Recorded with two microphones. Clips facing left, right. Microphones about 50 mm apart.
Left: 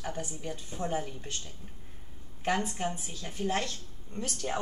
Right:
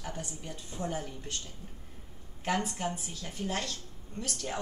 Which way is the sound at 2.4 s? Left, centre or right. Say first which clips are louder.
Left 1 dB; left.